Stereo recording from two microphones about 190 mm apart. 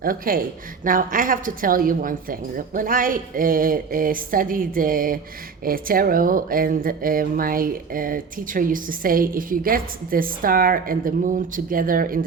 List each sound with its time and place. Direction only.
0.0 s speech: 50° right (ahead or behind)